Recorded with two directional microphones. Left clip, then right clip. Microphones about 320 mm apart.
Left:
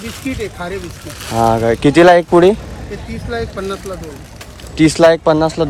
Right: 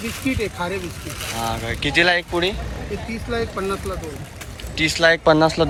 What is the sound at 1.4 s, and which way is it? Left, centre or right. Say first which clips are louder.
Speech: left 13 dB; left.